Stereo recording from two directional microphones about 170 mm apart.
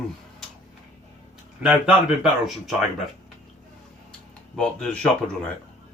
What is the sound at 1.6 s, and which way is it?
Speech, 5° right (ahead or behind).